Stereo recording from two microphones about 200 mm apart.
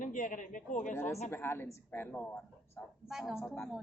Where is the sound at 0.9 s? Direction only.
10° left (ahead or behind).